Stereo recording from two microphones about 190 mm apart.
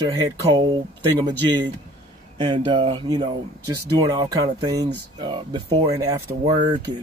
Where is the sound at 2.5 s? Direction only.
25° right (ahead or behind).